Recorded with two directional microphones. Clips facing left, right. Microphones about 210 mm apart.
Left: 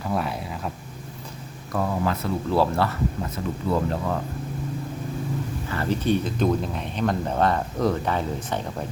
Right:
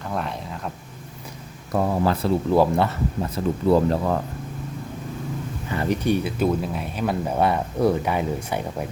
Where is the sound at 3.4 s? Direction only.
35° right (ahead or behind).